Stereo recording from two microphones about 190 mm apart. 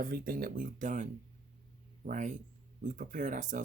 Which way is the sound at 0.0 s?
50° right (ahead or behind).